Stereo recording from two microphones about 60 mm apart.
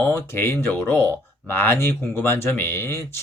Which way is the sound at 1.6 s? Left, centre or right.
Left.